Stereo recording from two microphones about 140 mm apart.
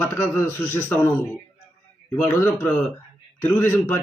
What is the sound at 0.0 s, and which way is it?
A man's voice, 15° left (ahead or behind).